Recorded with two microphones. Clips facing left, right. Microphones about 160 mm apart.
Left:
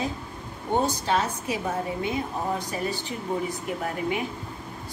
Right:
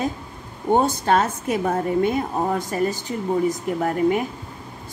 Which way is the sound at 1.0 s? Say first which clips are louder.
Right 6 dB; 50° right (ahead or behind).